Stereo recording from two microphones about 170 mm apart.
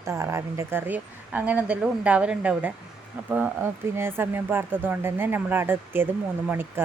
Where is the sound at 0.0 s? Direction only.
15° right (ahead or behind).